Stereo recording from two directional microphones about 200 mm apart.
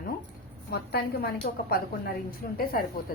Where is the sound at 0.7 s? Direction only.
55° left (ahead or behind).